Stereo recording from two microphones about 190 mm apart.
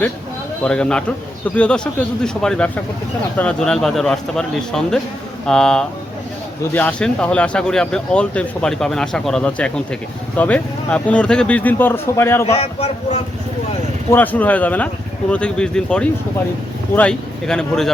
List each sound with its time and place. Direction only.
0.6 s speech: 5° left (ahead or behind)
12.5 s a man's voice: 35° left (ahead or behind)
14.1 s speech: 10° left (ahead or behind)